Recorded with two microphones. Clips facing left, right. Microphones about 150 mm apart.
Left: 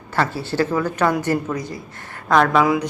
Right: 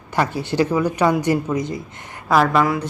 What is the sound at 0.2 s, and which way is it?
A woman's voice, 15° right (ahead or behind).